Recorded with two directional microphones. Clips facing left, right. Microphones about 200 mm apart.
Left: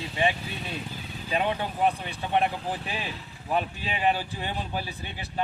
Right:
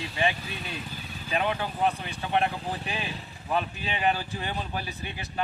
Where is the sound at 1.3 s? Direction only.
20° left (ahead or behind).